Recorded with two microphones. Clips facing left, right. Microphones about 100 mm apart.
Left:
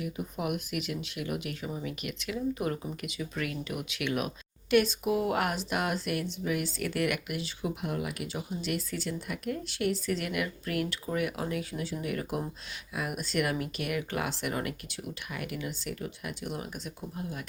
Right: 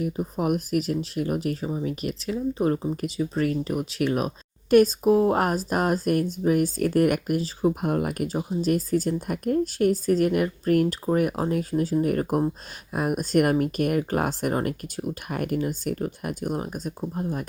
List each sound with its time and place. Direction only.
0.0 s speech: 40° right (ahead or behind)